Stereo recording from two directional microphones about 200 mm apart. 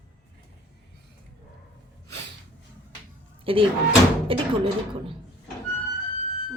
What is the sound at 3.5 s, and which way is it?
Speech, 25° right (ahead or behind).